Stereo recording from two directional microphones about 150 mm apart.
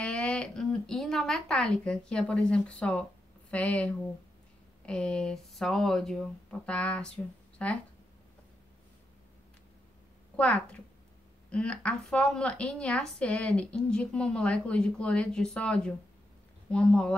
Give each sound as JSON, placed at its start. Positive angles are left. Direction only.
{"t": 0.0, "sound": "speech", "side_deg": 5}
{"t": 10.3, "sound": "a woman's voice", "side_deg": 10}